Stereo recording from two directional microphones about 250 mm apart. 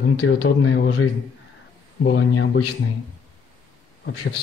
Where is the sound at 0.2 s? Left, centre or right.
Left.